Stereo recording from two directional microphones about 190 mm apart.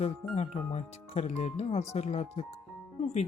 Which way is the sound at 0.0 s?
35° left (ahead or behind).